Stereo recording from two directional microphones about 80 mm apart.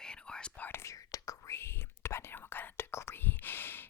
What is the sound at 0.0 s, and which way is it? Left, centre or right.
Whispering, centre.